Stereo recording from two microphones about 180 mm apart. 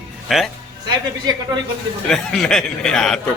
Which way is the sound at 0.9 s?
20° right (ahead or behind).